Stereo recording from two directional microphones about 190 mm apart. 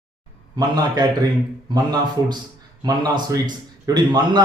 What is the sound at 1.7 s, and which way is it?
A man's voice, 20° right (ahead or behind).